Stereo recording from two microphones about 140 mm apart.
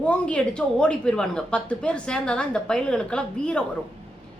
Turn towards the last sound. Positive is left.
turn(degrees=5)  # may be behind; listen again after turning